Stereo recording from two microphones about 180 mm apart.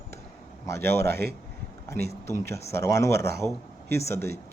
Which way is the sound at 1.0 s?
60° right (ahead or behind).